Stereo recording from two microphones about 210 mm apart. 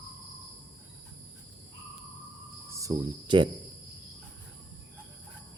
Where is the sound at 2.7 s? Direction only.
15° right (ahead or behind).